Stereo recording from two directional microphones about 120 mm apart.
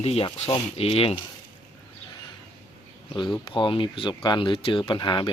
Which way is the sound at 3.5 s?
45° left (ahead or behind).